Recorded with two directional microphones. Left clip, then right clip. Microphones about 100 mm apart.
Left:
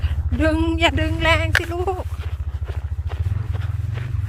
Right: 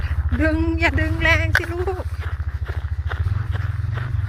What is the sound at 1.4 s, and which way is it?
Speech, 15° left (ahead or behind).